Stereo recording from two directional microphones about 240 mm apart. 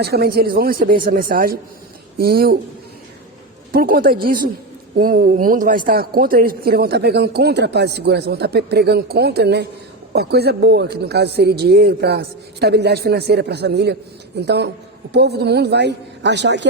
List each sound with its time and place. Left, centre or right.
0.0 s a man's voice: right
3.7 s a man's voice: right